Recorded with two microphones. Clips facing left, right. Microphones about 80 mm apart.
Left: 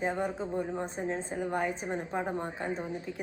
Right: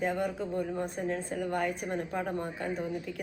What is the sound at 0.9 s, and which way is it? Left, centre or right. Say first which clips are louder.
Speech: right 1 dB; left.